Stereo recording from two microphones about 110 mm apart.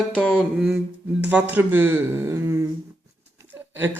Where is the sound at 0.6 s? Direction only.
15° right (ahead or behind).